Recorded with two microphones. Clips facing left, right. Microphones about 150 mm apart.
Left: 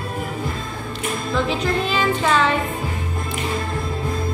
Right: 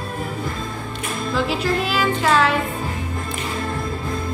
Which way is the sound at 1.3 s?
5° right (ahead or behind).